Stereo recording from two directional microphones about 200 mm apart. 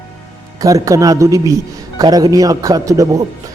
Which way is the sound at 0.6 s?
15° right (ahead or behind).